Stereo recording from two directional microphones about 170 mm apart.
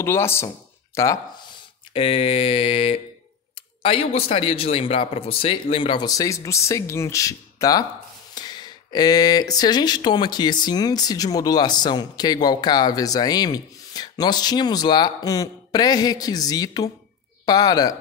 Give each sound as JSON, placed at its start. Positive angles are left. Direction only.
{"t": 0.0, "sound": "speech", "side_deg": 15}
{"t": 2.0, "sound": "speech", "side_deg": 35}